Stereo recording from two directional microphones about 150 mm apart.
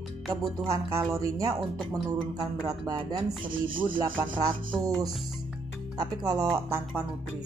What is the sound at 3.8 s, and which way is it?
Rub, 35° right (ahead or behind).